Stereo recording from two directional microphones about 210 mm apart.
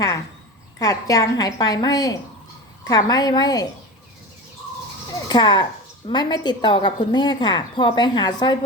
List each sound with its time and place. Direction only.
0.8 s a woman's voice: 15° left (ahead or behind)
5.3 s a woman's voice: 20° left (ahead or behind)